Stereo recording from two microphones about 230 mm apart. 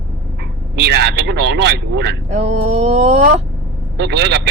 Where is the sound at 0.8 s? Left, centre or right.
Right.